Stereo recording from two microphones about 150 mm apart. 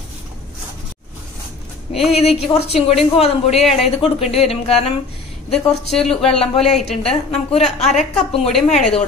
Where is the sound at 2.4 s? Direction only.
45° left (ahead or behind).